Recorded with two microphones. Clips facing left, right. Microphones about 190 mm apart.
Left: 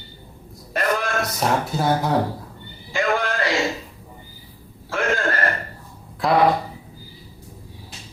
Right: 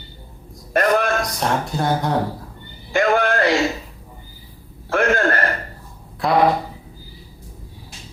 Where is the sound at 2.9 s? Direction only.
60° right (ahead or behind).